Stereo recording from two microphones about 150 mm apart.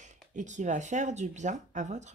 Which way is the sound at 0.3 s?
55° right (ahead or behind).